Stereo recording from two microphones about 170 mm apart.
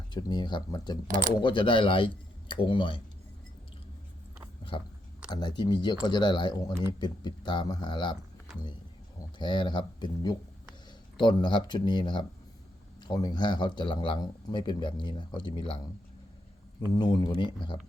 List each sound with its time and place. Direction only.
0.1 s speech: 25° left (ahead or behind)
1.0 s speech: 50° right (ahead or behind)
1.4 s speech: 30° left (ahead or behind)
4.7 s speech: 30° left (ahead or behind)
9.4 s speech: 25° left (ahead or behind)
16.9 s speech: 25° left (ahead or behind)